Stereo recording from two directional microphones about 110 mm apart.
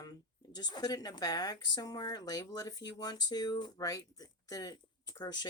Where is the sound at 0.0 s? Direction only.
40° left (ahead or behind).